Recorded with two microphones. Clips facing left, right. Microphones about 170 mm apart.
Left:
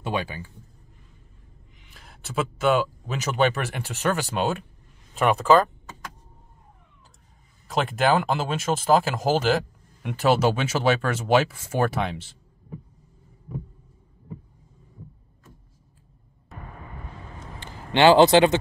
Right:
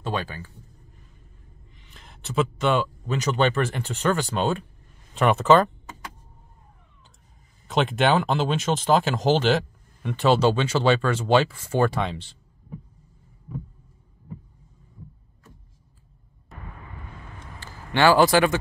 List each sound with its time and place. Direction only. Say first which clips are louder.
0.0 s speech: left 1 dB; 15° left (ahead or behind)
1.8 s speech: even; 5° left (ahead or behind)
7.6 s speech: right 1 dB; centre (ahead or behind)
17.6 s a man's voice: left 2 dB; 20° left (ahead or behind)